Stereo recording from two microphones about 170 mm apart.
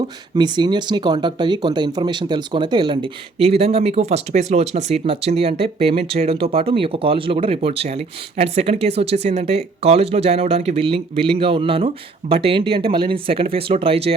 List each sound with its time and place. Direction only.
0.3 s speech: 25° right (ahead or behind)